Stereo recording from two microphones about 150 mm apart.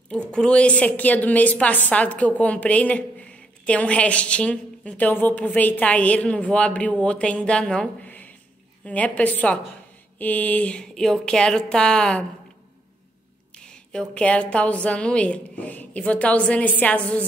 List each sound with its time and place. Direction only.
0.1 s a woman's voice: 5° left (ahead or behind)
13.6 s a woman's voice: 5° left (ahead or behind)